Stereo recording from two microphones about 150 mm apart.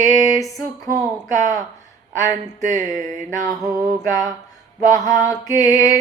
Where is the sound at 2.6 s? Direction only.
55° right (ahead or behind).